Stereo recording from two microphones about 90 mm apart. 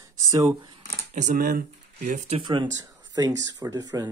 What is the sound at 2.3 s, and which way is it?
Speech, 60° right (ahead or behind).